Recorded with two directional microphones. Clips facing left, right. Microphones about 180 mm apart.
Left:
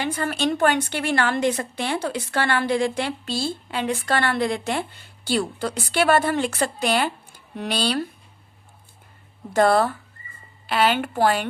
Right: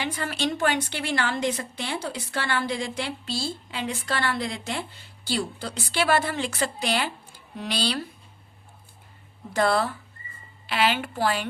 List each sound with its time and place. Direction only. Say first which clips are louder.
0.0 s a woman's voice: left 4 dB; 50° left (ahead or behind)
9.5 s a woman's voice: left 5 dB; 50° left (ahead or behind)